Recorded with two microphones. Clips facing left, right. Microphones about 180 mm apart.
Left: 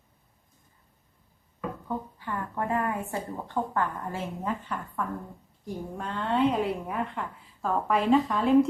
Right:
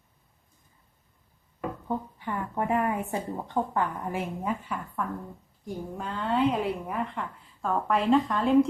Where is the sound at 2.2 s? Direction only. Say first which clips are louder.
Right 2 dB; 15° right (ahead or behind).